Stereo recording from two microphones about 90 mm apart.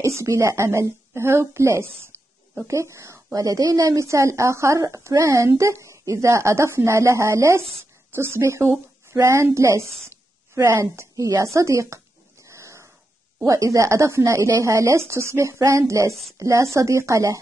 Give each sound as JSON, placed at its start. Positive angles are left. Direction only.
{"t": 0.0, "sound": "speech", "side_deg": -35}
{"t": 2.1, "sound": "a sound", "side_deg": -30}
{"t": 3.3, "sound": "speech", "side_deg": -40}
{"t": 10.0, "sound": "a sound", "side_deg": -30}
{"t": 13.4, "sound": "speech", "side_deg": -35}
{"t": 16.1, "sound": "a woman's voice", "side_deg": 0}
{"t": 16.3, "sound": "speech", "side_deg": -35}